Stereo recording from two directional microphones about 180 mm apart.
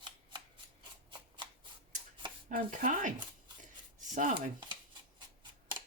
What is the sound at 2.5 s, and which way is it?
Chopping, 50° right (ahead or behind).